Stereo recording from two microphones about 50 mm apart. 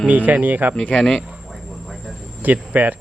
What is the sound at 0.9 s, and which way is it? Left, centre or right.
Cattle, centre.